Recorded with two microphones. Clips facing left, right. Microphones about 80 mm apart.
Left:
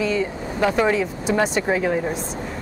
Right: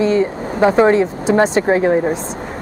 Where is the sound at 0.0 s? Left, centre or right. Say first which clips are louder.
Right 7 dB; right.